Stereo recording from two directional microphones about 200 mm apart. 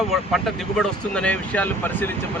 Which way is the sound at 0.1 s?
Centre (ahead or behind).